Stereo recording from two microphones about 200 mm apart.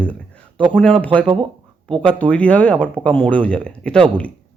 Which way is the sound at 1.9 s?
5° left (ahead or behind).